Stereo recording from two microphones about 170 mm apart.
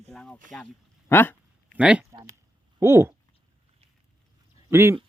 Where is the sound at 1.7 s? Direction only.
5° right (ahead or behind).